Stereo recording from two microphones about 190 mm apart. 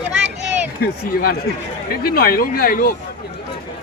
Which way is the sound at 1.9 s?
50° left (ahead or behind).